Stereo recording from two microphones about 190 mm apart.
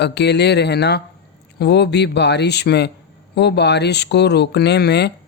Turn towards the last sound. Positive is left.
turn(degrees=60)  # may be behind; listen again after turning